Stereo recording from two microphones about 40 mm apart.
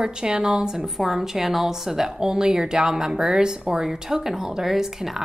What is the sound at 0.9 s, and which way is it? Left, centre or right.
A woman's voice, centre.